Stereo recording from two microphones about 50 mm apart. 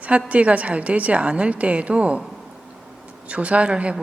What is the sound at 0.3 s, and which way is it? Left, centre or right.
A woman's voice, right.